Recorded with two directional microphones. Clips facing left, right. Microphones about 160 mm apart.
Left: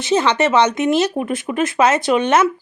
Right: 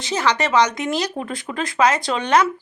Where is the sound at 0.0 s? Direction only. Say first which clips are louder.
Left 5 dB; 25° left (ahead or behind).